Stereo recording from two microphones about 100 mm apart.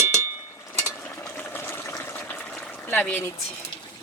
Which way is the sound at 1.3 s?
20° left (ahead or behind).